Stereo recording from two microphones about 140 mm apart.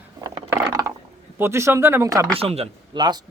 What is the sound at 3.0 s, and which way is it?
Speech, 30° right (ahead or behind).